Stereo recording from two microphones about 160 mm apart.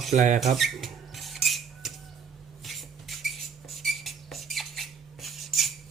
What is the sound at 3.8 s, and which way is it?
Squeak, centre (ahead or behind).